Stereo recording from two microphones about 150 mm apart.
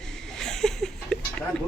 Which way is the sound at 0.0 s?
5° left (ahead or behind).